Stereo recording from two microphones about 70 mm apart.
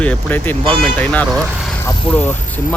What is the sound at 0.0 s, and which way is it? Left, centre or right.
Speech, left.